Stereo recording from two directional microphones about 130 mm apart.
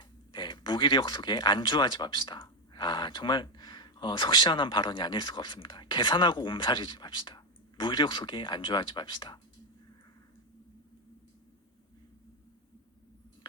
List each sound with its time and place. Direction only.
0.3 s speech: 40° left (ahead or behind)